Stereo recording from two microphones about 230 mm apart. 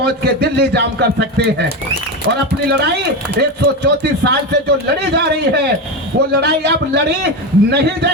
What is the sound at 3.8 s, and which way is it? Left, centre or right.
A man's voice, right.